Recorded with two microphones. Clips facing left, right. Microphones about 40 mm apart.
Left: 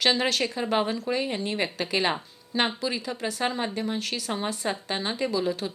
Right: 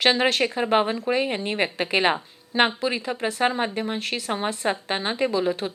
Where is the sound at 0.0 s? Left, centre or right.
Right.